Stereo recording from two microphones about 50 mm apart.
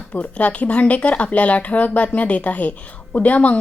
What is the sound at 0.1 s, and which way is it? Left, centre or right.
Speech, left.